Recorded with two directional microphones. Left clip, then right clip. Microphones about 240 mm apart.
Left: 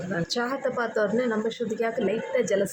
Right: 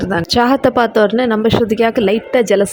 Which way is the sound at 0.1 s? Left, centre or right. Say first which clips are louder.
Right 15 dB; right.